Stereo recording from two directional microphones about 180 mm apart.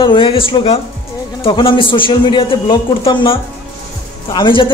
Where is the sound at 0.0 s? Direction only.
30° left (ahead or behind).